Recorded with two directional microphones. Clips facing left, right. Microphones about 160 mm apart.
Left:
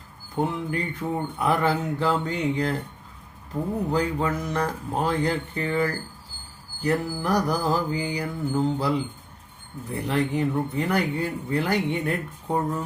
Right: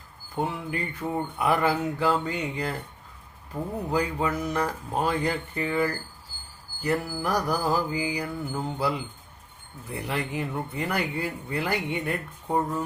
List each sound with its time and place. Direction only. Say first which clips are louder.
0.3 s speech: left 3 dB; 5° right (ahead or behind)